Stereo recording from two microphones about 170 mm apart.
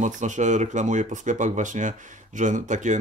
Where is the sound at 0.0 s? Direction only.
45° right (ahead or behind).